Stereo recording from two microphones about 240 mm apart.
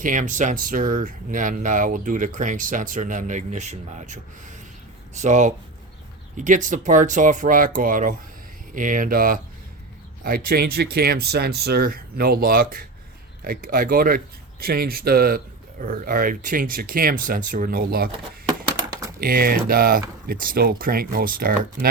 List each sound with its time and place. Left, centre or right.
0.0 s speech: right
19.2 s speech: right